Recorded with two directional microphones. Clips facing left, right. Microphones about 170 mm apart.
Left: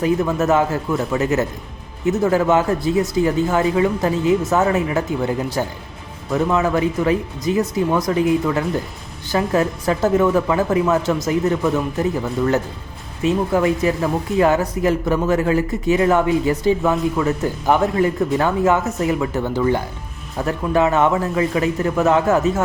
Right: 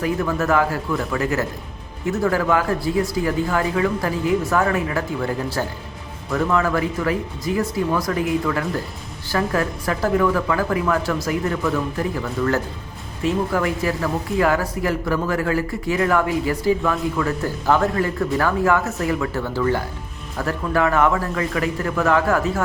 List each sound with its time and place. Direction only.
0.0 s speech: 20° left (ahead or behind)
13.2 s speech: 20° left (ahead or behind)